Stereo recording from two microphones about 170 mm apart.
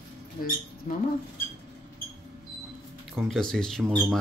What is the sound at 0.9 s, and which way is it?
Speech, 45° left (ahead or behind).